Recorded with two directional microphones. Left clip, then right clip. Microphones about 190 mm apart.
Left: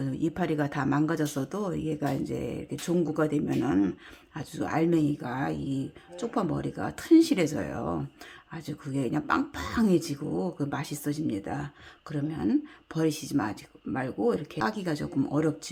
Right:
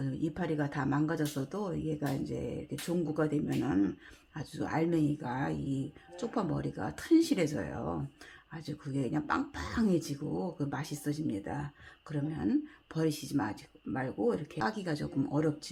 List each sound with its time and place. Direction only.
0.0 s speech: 20° left (ahead or behind)